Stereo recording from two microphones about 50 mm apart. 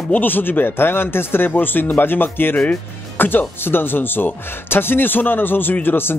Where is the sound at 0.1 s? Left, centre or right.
Left.